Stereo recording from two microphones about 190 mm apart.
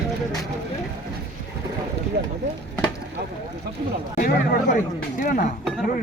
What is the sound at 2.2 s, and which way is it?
Speech, 60° right (ahead or behind).